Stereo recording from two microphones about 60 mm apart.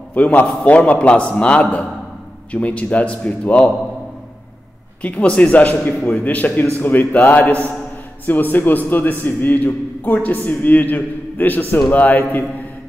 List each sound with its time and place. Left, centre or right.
0.1 s a man's voice: left
5.0 s a man's voice: left